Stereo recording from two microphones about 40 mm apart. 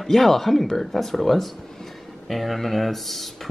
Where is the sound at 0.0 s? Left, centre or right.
Centre.